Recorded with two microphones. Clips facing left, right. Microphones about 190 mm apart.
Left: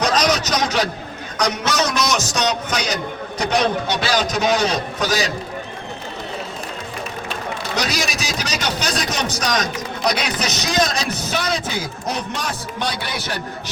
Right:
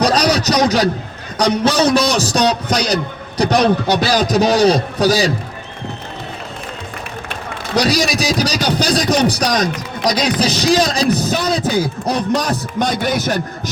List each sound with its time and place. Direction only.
0.0 s a sound: 35° right (ahead or behind)
1.4 s a man's voice: 30° right (ahead or behind)
7.8 s a man's voice: 35° right (ahead or behind)